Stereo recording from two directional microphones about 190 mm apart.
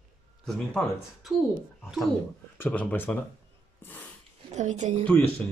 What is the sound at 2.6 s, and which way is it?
Speech, 10° left (ahead or behind).